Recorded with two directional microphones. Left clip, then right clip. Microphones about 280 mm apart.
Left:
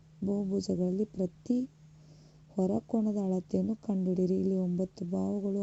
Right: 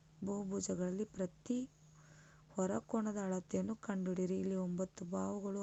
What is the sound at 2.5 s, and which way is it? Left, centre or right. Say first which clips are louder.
A woman's voice: left 7 dB; right.